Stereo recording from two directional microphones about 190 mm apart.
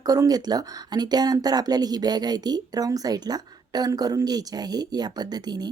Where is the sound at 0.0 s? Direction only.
20° right (ahead or behind).